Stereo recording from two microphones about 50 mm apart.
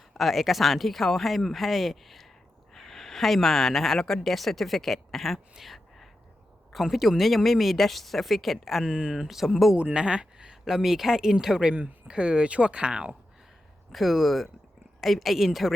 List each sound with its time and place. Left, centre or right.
0.1 s speech: centre
8.8 s speech: centre
9.1 s speech: centre
9.7 s speech: right
11.7 s speech: right
12.0 s speech: centre
13.9 s speech: centre